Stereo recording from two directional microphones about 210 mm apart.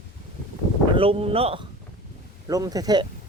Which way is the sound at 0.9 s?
25° right (ahead or behind).